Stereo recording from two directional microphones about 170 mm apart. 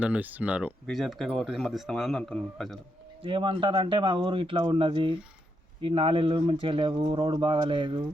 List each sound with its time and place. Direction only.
0.0 s speech: 10° right (ahead or behind)
3.2 s speech: 30° right (ahead or behind)